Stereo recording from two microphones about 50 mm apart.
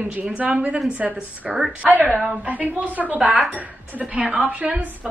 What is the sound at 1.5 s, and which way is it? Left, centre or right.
Speech, centre.